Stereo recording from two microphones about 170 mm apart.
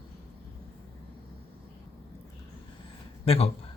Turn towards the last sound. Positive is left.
turn(degrees=35)  # may be behind; listen again after turning